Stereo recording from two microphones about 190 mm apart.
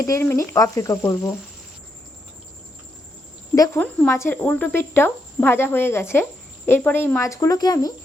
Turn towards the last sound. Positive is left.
turn(degrees=20)  # may be behind; listen again after turning